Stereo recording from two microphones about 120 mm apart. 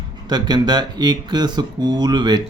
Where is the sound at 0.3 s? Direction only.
35° right (ahead or behind).